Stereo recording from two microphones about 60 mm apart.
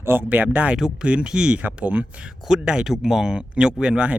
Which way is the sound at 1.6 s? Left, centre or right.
Right.